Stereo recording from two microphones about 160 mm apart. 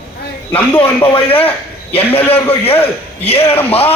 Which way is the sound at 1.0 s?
35° left (ahead or behind).